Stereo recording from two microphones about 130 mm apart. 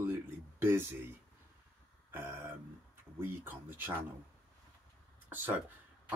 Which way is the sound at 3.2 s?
15° right (ahead or behind).